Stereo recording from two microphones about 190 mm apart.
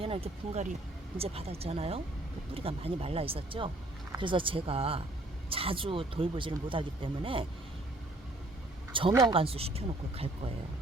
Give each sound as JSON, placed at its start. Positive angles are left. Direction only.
{"t": 0.0, "sound": "speech", "side_deg": -30}
{"t": 8.9, "sound": "speech", "side_deg": -25}